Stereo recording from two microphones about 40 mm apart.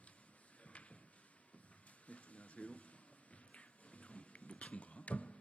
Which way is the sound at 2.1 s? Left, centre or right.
Left.